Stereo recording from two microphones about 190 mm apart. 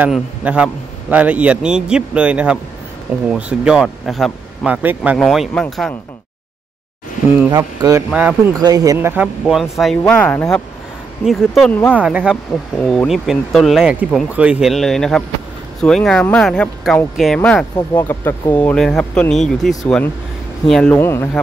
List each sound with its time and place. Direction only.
0.0 s a man's voice: 5° right (ahead or behind)
7.5 s speech: 20° right (ahead or behind)
8.1 s a man's voice: 5° right (ahead or behind)
8.5 s a man's voice: 20° right (ahead or behind); by 21.4 s 10° left (ahead or behind)